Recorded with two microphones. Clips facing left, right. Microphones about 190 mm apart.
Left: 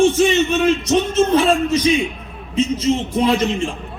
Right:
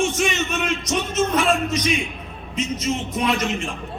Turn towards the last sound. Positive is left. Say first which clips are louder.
# left 6 dB
turn(degrees=30)  # may be behind; listen again after turning